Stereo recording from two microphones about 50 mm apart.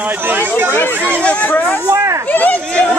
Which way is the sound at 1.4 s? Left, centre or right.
Left.